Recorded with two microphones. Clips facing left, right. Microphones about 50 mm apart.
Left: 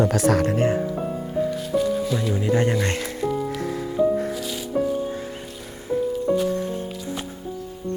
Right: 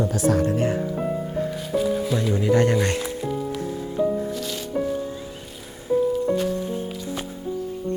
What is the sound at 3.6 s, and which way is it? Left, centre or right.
Music, left.